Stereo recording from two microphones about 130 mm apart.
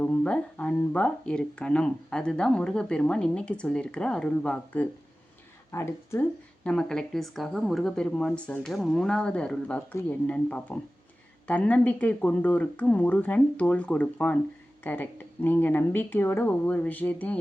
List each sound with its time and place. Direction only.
0.0 s speech: 10° left (ahead or behind)
5.7 s speech: 20° left (ahead or behind)
6.7 s speech: 5° left (ahead or behind)